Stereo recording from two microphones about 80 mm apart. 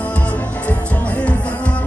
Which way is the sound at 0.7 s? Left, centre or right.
Centre.